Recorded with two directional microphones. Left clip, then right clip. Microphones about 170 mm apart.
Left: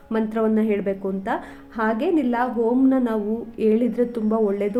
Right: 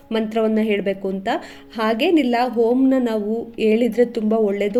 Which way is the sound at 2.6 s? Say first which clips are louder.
Right 3 dB; 15° right (ahead or behind).